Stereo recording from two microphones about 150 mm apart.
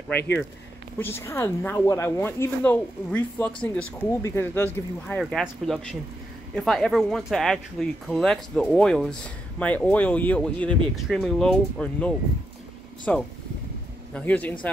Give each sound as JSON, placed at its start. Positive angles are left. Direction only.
{"t": 0.1, "sound": "a woman's voice", "side_deg": 10}
{"t": 5.0, "sound": "a woman's voice", "side_deg": 5}